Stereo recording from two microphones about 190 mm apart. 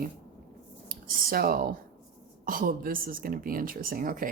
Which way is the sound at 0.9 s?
50° right (ahead or behind).